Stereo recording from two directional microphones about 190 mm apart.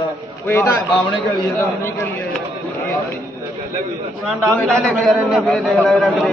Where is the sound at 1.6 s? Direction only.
15° left (ahead or behind).